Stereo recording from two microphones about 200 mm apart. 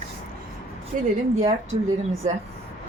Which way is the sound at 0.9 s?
35° right (ahead or behind).